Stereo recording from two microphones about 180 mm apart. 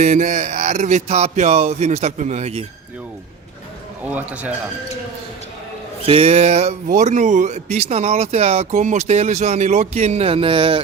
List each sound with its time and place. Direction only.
0.0 s speech: 40° right (ahead or behind)
4.0 s a man's voice: 10° right (ahead or behind)
6.1 s speech: 35° right (ahead or behind)